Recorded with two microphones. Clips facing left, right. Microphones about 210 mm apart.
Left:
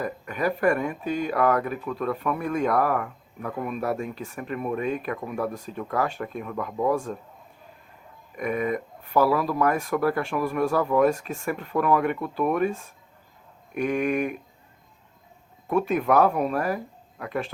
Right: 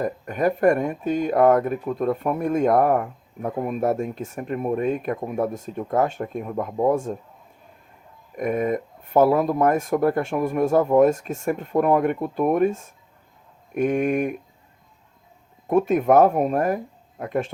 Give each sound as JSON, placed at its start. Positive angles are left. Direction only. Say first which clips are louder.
{"t": 0.0, "sound": "speech", "louder": "right 5 dB", "side_deg": -45}
{"t": 5.4, "sound": "speech", "louder": "right 4 dB", "side_deg": -20}
{"t": 6.0, "sound": "speech", "louder": "right 5 dB", "side_deg": -45}
{"t": 8.4, "sound": "speech", "louder": "right 3 dB", "side_deg": -45}
{"t": 15.7, "sound": "speech", "louder": "right 5 dB", "side_deg": -45}